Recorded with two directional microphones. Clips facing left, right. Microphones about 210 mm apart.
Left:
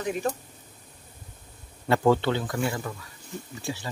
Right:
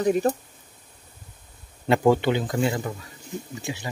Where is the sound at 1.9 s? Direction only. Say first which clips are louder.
Right 2 dB; 15° right (ahead or behind).